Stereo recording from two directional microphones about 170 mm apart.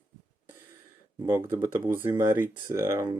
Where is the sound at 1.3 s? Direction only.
20° right (ahead or behind).